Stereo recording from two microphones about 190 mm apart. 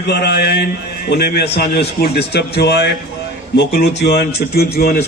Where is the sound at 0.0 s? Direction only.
60° left (ahead or behind).